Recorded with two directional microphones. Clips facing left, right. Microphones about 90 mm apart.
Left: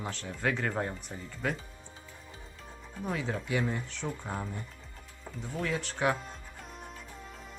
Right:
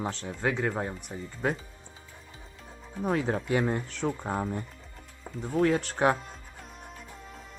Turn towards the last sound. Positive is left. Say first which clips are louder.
# right 5 dB
turn(degrees=-40)  # may be behind; listen again after turning